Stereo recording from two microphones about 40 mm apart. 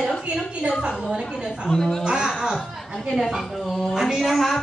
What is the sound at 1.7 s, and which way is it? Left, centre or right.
Speech, centre.